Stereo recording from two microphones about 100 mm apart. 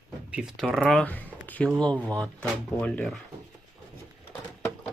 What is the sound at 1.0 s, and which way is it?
Speech, 15° left (ahead or behind).